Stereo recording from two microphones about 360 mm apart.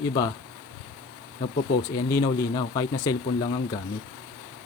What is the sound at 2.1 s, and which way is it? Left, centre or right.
Speech, centre.